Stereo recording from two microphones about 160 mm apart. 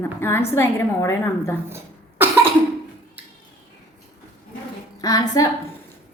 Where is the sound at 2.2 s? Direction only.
15° right (ahead or behind).